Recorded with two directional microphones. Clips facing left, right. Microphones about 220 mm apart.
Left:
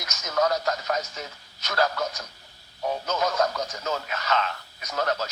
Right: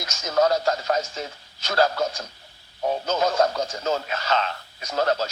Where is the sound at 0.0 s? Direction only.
30° right (ahead or behind).